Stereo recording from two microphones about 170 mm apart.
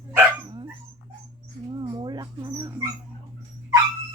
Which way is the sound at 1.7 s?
25° right (ahead or behind).